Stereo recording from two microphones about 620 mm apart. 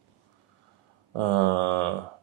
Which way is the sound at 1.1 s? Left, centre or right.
Right.